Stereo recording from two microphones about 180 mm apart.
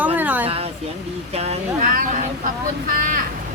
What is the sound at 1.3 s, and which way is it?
Speech, 35° right (ahead or behind).